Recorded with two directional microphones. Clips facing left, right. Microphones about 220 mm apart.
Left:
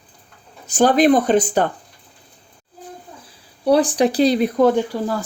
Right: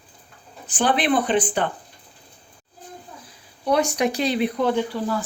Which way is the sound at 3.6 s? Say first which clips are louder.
Left 5 dB; 35° left (ahead or behind).